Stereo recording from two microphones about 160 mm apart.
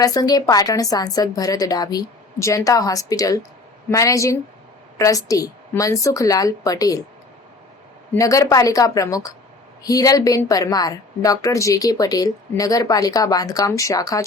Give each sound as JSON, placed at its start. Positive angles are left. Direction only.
{"t": 0.0, "sound": "a woman's voice", "side_deg": 25}
{"t": 8.1, "sound": "a woman's voice", "side_deg": 20}